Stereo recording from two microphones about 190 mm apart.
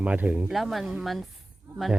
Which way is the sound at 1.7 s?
15° right (ahead or behind).